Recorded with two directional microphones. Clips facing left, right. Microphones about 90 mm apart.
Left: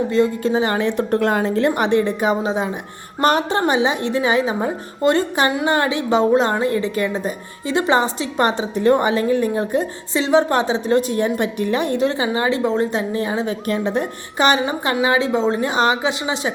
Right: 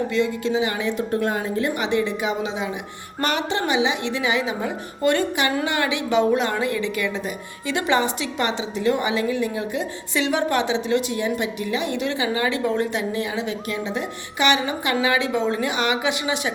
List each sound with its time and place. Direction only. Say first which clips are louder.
0.1 s a woman's voice: left 4 dB; 40° left (ahead or behind); by 1.7 s 70° left (ahead or behind)
1.7 s a woman's voice: left 5 dB; 50° left (ahead or behind); by 16.5 s 30° left (ahead or behind)